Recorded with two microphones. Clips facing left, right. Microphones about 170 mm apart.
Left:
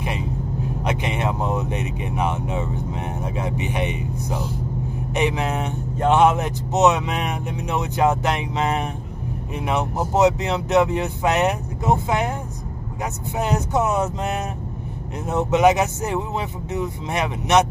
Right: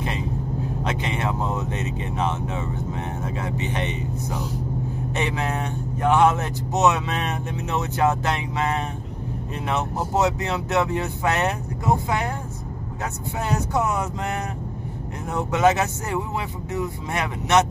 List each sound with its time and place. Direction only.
0.8 s speech: 15° left (ahead or behind)